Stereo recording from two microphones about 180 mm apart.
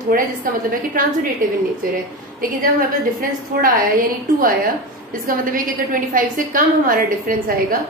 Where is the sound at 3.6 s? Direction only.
50° right (ahead or behind).